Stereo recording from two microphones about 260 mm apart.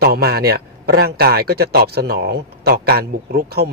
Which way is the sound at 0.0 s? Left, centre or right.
Right.